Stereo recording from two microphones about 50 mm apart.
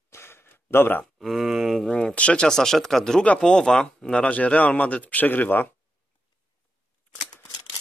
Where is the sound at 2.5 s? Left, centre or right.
Centre.